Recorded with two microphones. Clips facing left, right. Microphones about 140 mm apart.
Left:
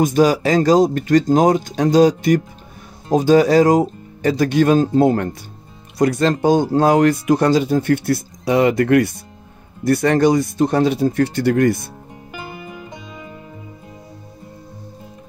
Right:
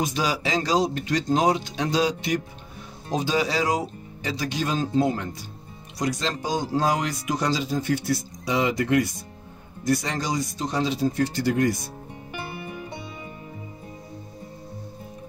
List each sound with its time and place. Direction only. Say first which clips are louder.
0.0 s speech: left 11 dB; 50° left (ahead or behind)